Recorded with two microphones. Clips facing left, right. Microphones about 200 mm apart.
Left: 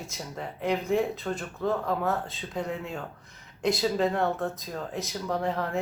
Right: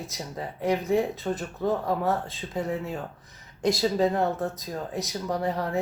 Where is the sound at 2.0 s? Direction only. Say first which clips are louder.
Right 2 dB; centre (ahead or behind).